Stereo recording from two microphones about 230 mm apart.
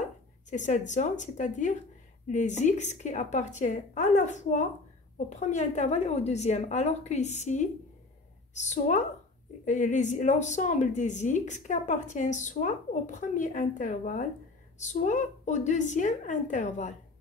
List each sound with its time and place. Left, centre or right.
0.5 s a woman's voice: left